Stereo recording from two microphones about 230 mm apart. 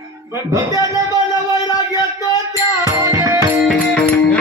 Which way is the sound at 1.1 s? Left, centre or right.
Centre.